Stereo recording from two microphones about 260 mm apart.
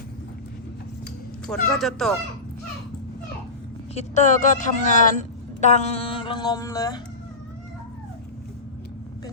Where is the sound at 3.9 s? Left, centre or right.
Left.